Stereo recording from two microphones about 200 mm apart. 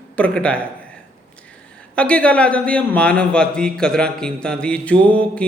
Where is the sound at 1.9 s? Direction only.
5° left (ahead or behind).